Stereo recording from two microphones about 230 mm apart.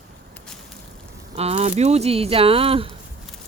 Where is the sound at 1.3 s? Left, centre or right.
Right.